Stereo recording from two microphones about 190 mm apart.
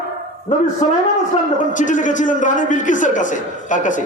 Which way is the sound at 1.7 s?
40° left (ahead or behind).